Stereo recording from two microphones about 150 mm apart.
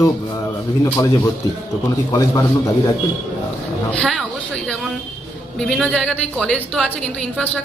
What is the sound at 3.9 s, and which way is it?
Speech, 5° left (ahead or behind).